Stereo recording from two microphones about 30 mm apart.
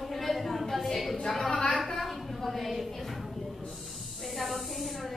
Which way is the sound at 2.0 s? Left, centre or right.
Centre.